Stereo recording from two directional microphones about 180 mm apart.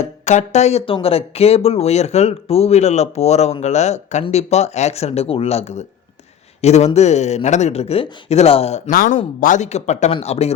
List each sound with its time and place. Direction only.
0.0 s speech: 40° left (ahead or behind)
8.9 s speech: 50° left (ahead or behind); by 10.5 s 35° left (ahead or behind)